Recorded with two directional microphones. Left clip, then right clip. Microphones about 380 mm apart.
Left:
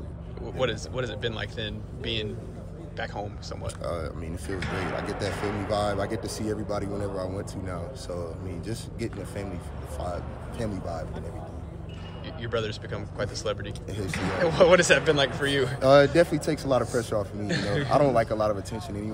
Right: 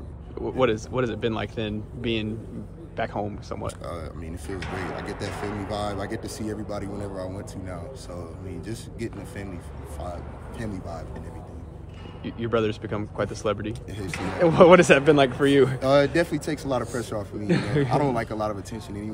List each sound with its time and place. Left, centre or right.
0.6 s speech: centre
3.8 s speech: centre
12.3 s speech: centre
13.9 s speech: centre
14.4 s speech: centre
15.8 s speech: centre
17.5 s speech: centre
17.8 s speech: centre